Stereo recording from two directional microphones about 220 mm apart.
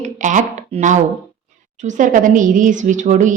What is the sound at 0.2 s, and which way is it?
Speech, 35° right (ahead or behind).